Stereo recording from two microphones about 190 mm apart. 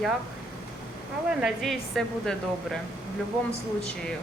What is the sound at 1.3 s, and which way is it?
Speech, centre (ahead or behind).